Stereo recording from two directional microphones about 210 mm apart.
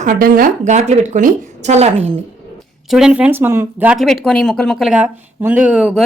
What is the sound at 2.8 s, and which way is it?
Speech, centre (ahead or behind).